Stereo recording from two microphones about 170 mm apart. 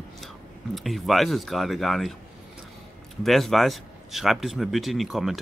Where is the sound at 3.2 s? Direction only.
Centre (ahead or behind).